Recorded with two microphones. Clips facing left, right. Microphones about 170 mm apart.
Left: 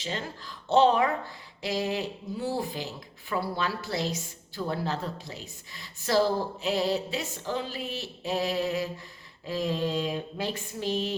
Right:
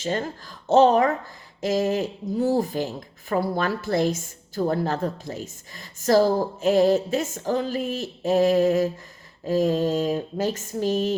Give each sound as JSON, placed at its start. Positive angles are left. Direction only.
{"t": 0.0, "sound": "speech", "side_deg": -45}